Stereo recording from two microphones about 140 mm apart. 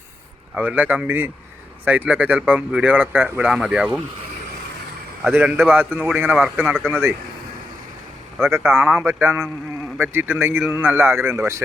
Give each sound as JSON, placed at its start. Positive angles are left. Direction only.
{"t": 0.5, "sound": "speech", "side_deg": -10}
{"t": 5.2, "sound": "speech", "side_deg": -10}
{"t": 8.4, "sound": "speech", "side_deg": -15}